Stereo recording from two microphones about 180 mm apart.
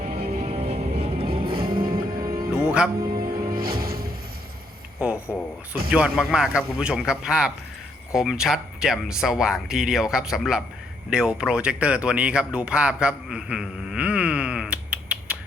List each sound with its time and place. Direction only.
0.0 s music: 35° right (ahead or behind)
1.5 s music: 55° right (ahead or behind)
2.2 s music: 25° right (ahead or behind)
2.6 s music: 5° right (ahead or behind)
3.2 s music: 55° right (ahead or behind)
5.0 s a sound: 5° right (ahead or behind)
6.1 s speech: 5° right (ahead or behind)